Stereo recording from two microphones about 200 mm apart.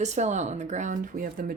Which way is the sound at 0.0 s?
35° right (ahead or behind).